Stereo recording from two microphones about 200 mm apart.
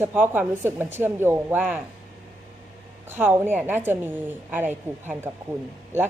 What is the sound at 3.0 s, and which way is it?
Speech, 10° right (ahead or behind).